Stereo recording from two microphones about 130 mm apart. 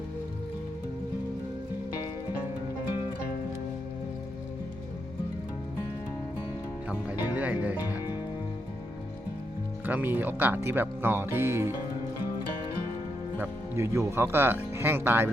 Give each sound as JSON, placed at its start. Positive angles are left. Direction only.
{"t": 7.1, "sound": "music", "side_deg": -10}
{"t": 9.8, "sound": "speech", "side_deg": -15}
{"t": 13.4, "sound": "speech", "side_deg": -20}